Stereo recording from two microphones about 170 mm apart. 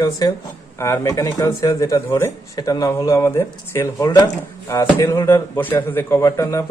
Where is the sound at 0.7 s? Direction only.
20° left (ahead or behind).